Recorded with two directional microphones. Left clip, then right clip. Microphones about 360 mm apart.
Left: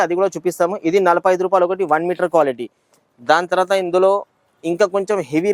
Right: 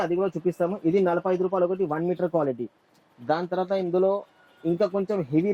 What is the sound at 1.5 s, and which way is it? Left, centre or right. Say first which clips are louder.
Speech: left 9 dB; centre.